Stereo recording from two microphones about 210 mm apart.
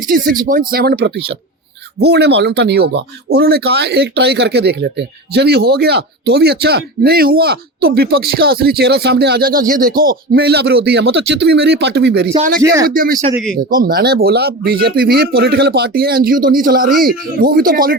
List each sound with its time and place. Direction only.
0.4 s speech: 40° right (ahead or behind)
12.4 s speech: 45° right (ahead or behind)
12.6 s speech: 15° right (ahead or behind)
12.9 s speech: 40° right (ahead or behind)